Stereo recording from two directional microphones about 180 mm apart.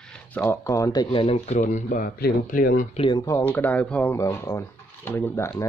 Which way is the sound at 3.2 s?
15° left (ahead or behind).